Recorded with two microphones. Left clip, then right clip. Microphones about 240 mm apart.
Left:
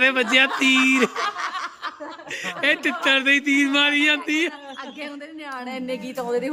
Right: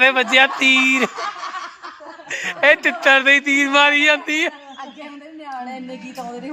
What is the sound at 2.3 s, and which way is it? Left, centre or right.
Speech, centre.